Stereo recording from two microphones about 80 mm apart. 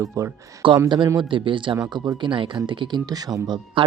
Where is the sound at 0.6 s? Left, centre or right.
Right.